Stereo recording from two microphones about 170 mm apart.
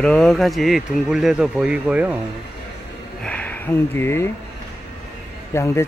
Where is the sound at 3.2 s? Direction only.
10° left (ahead or behind).